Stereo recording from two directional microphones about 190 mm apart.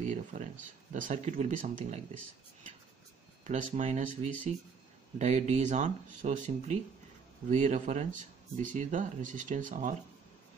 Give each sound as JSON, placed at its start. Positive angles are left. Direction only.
{"t": 0.0, "sound": "speech", "side_deg": -40}
{"t": 3.4, "sound": "speech", "side_deg": -40}